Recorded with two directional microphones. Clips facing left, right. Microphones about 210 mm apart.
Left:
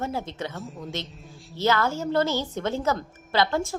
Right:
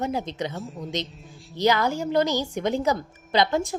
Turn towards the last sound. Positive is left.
turn(degrees=-15)  # may be behind; listen again after turning